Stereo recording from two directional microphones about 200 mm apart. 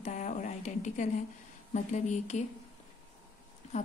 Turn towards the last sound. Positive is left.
turn(degrees=35)  # may be behind; listen again after turning